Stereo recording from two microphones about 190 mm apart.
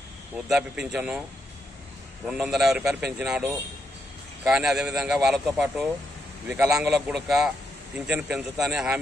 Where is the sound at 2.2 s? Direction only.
5° right (ahead or behind).